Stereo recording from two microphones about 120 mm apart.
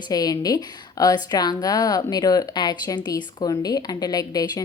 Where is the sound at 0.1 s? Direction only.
30° left (ahead or behind).